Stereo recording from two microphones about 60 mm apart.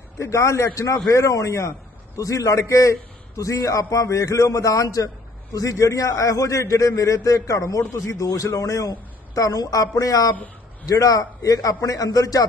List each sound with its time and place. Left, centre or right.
0.2 s a man's voice: left
0.7 s a man's voice: left